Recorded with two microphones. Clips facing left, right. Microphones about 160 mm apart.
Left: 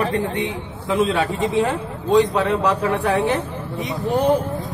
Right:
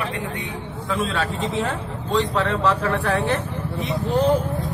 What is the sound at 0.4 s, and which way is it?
A man's voice, 20° left (ahead or behind).